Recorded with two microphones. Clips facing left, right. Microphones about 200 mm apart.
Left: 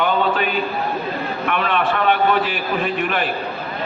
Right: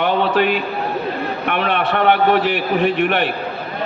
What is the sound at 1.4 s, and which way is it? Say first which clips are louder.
A man's voice: even; 65° right (ahead or behind).